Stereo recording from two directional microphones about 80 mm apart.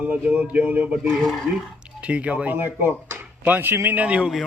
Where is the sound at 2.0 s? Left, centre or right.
Centre.